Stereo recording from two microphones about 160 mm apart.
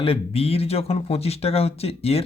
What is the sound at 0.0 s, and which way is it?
Speech, 35° left (ahead or behind).